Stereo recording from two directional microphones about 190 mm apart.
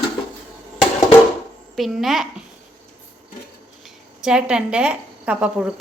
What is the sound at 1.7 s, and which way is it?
Speech, centre (ahead or behind).